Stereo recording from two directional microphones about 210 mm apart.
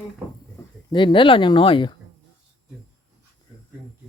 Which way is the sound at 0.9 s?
25° left (ahead or behind).